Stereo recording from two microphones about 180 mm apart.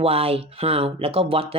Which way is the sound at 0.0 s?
35° right (ahead or behind).